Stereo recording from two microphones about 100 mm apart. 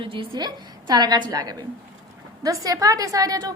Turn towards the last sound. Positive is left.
turn(degrees=-40)  # may be behind; listen again after turning